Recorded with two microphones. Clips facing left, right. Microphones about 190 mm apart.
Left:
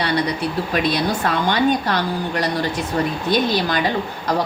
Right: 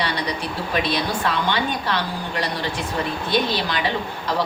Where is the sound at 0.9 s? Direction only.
45° left (ahead or behind).